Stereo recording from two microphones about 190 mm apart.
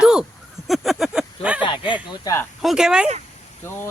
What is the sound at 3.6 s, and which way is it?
Speech, 15° left (ahead or behind).